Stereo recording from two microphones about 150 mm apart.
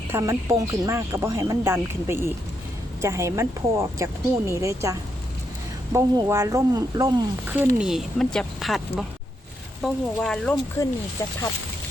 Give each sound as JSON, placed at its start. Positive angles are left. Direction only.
{"t": 0.1, "sound": "speech", "side_deg": -20}
{"t": 7.8, "sound": "speech", "side_deg": -5}
{"t": 10.8, "sound": "speech", "side_deg": 20}